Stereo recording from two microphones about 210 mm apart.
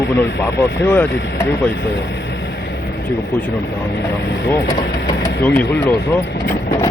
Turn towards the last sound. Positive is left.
turn(degrees=10)  # may be behind; listen again after turning